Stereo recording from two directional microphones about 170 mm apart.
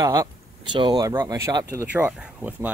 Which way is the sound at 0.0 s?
20° right (ahead or behind).